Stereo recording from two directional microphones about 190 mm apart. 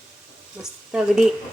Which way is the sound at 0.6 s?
10° right (ahead or behind).